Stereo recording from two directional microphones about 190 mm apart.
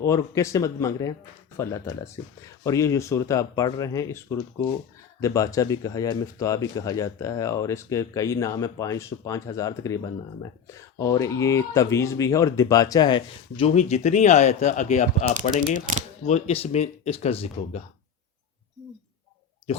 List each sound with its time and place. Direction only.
0.0 s speech: 15° left (ahead or behind)
5.2 s speech: 15° left (ahead or behind); by 17.8 s 35° left (ahead or behind)